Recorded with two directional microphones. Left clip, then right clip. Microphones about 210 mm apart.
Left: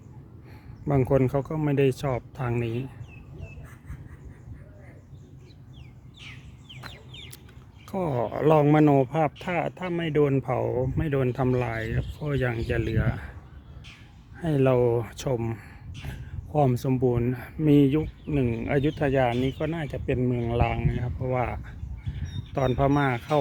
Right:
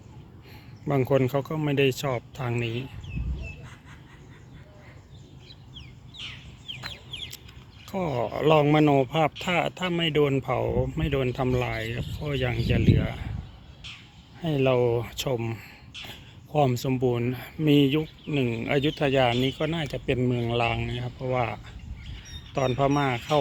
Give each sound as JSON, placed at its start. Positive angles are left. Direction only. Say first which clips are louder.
{"t": 0.9, "sound": "speech", "louder": "even", "side_deg": 5}
{"t": 6.2, "sound": "chicken", "louder": "right 6 dB", "side_deg": 55}
{"t": 7.9, "sound": "speech", "louder": "even", "side_deg": 15}
{"t": 14.4, "sound": "speech", "louder": "left 1 dB", "side_deg": 15}